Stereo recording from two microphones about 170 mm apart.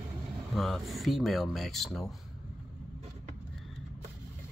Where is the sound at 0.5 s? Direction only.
Centre (ahead or behind).